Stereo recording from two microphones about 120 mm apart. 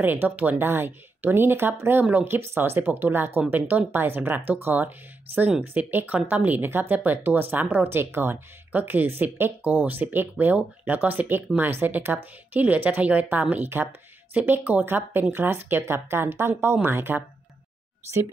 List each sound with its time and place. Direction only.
0.0 s speech: 15° right (ahead or behind)